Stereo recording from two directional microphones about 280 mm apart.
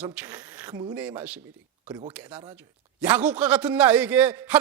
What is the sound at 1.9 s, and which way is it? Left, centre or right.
Speech, centre.